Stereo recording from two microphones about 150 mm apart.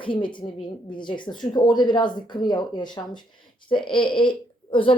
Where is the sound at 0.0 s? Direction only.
35° left (ahead or behind).